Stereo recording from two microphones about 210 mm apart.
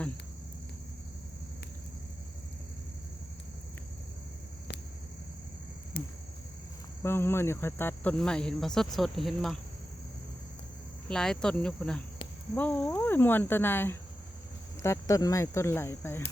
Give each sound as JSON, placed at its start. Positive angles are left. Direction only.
{"t": 5.9, "sound": "a sound", "side_deg": 45}
{"t": 7.0, "sound": "cricket", "side_deg": 10}
{"t": 11.1, "sound": "cricket", "side_deg": 5}
{"t": 12.5, "sound": "speech", "side_deg": 5}